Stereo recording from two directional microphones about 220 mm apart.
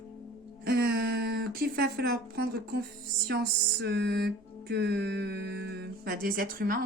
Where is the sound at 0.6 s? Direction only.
45° right (ahead or behind).